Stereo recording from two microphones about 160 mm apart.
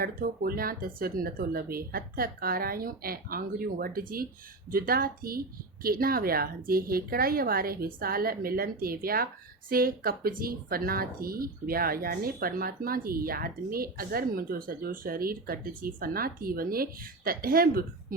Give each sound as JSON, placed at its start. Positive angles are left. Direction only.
{"t": 0.0, "sound": "a woman's voice", "side_deg": -65}